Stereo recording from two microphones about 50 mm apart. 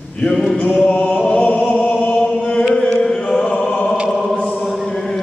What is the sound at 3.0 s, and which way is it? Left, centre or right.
Music, centre.